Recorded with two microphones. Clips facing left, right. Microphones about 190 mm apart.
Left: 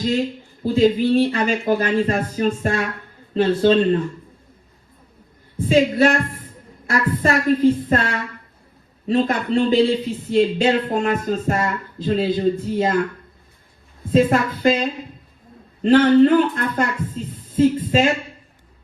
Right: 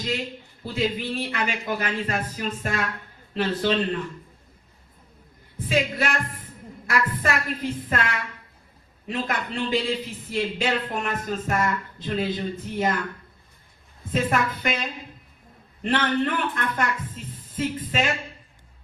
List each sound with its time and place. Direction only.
0.6 s speech: 30° left (ahead or behind)
5.5 s speech: 30° left (ahead or behind)
14.3 s speech: 30° left (ahead or behind)